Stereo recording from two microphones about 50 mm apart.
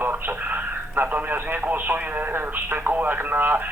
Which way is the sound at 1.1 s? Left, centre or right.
Right.